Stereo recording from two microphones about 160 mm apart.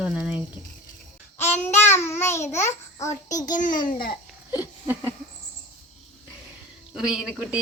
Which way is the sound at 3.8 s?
65° left (ahead or behind).